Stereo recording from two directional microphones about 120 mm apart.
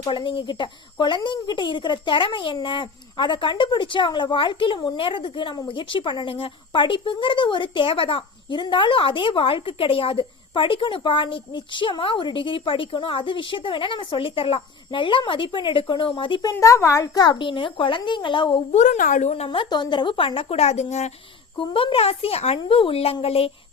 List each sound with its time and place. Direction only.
0.1 s speech: 45° left (ahead or behind)
18.7 s a woman's voice: 85° left; by 19.5 s 70° left (ahead or behind)
19.5 s speech: 40° left (ahead or behind); by 21.1 s 65° left (ahead or behind)
21.6 s speech: 45° left (ahead or behind)